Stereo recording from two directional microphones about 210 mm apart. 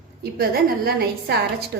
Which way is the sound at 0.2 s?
45° right (ahead or behind).